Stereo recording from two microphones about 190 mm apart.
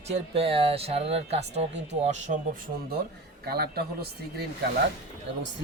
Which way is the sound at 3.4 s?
55° right (ahead or behind).